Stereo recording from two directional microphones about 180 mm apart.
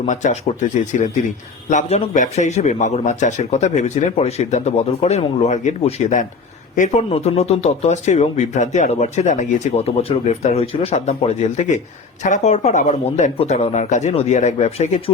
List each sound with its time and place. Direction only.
0.0 s speech: 40° left (ahead or behind)